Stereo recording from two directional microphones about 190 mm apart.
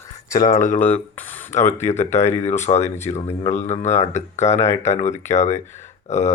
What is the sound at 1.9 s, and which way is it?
Speech, 35° left (ahead or behind).